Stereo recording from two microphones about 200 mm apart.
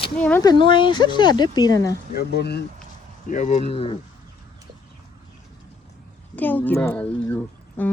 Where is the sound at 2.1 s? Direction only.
55° left (ahead or behind).